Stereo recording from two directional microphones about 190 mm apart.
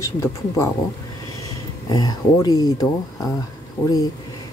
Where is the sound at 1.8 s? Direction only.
20° left (ahead or behind).